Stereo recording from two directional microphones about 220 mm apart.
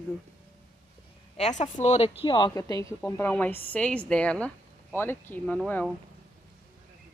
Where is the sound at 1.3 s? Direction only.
30° left (ahead or behind); by 5.6 s 10° left (ahead or behind).